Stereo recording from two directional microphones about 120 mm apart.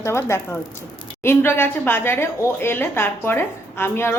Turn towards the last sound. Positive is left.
turn(degrees=20)  # may be behind; listen again after turning